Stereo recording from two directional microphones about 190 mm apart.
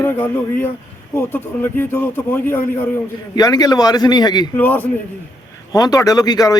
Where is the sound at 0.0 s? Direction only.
10° left (ahead or behind).